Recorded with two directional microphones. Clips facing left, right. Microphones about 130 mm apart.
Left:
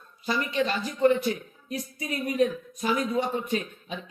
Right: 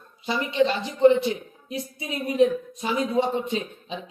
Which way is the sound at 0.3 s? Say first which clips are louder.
Right 4 dB; 25° right (ahead or behind).